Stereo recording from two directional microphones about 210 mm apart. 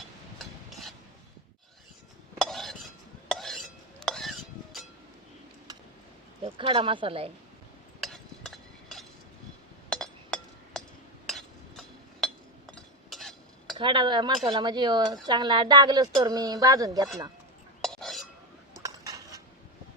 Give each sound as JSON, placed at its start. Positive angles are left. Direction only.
{"t": 2.4, "sound": "cutlery", "side_deg": 0}
{"t": 3.2, "sound": "a sound", "side_deg": 0}
{"t": 6.4, "sound": "speech", "side_deg": -25}
{"t": 8.0, "sound": "a sound", "side_deg": 0}
{"t": 9.9, "sound": "chink", "side_deg": 5}
{"t": 12.7, "sound": "stir", "side_deg": 0}
{"t": 13.7, "sound": "speech", "side_deg": -25}
{"t": 17.8, "sound": "a sound", "side_deg": 0}
{"t": 18.8, "sound": "dishes", "side_deg": -15}